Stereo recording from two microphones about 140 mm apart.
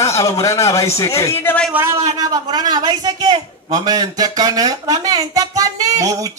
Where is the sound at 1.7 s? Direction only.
15° right (ahead or behind).